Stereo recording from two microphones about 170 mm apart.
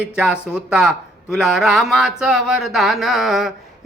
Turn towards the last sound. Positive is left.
turn(degrees=0)  # may be behind; listen again after turning